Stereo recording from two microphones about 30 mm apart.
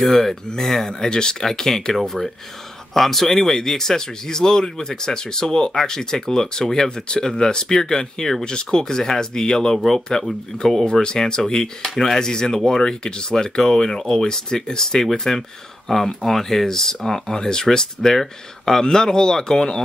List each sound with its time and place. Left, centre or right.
0.0 s speech: centre
10.9 s speech: left
11.9 s speech: centre
12.2 s speech: left